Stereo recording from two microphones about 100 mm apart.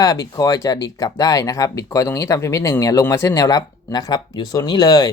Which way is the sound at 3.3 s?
40° left (ahead or behind).